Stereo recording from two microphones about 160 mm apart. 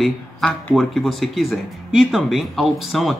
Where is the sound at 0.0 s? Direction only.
Centre (ahead or behind).